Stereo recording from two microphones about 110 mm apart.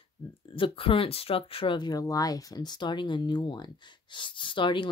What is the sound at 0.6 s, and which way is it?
Speech, 55° left (ahead or behind).